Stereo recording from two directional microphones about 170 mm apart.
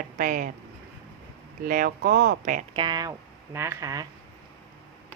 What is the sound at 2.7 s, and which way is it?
Speech, 25° right (ahead or behind).